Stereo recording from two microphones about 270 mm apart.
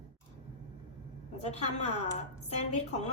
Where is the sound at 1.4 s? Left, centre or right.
Left.